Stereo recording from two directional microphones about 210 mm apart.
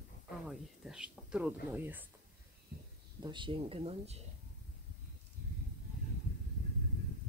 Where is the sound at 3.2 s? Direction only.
20° right (ahead or behind).